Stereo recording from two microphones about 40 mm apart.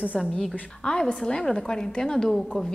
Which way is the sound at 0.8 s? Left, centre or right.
Left.